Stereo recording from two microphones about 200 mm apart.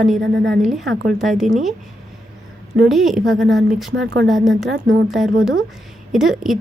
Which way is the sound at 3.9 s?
60° right (ahead or behind).